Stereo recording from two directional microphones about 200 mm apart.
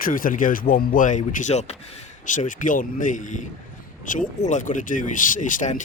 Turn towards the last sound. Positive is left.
turn(degrees=40)  # may be behind; listen again after turning